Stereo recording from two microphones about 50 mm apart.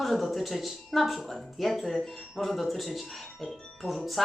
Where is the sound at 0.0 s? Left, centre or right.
Centre.